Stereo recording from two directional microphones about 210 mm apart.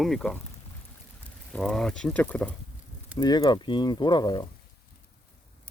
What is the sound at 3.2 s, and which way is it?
Speech, 20° left (ahead or behind).